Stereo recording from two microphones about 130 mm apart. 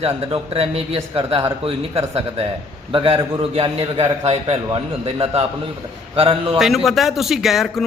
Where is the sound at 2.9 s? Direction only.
40° right (ahead or behind).